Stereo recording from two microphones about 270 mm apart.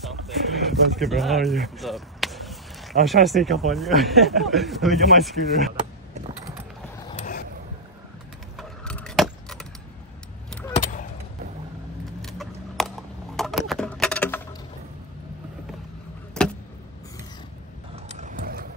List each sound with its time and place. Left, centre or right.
0.0 s speech: centre
7.1 s vehicle: left
8.5 s a sound: centre
10.7 s vehicle: left
12.2 s keys jangling: centre
13.4 s a sound: centre
16.4 s vehicle: centre
17.9 s vehicle: right